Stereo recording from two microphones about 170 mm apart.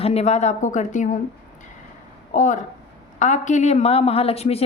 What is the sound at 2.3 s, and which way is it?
A woman's voice, 50° left (ahead or behind).